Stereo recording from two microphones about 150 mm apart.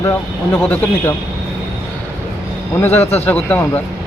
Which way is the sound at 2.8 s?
15° left (ahead or behind).